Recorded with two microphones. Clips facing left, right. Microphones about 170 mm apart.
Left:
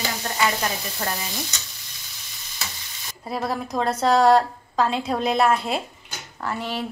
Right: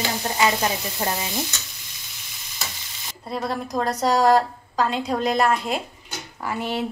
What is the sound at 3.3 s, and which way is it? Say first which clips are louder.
A woman's voice: even; 5° left (ahead or behind).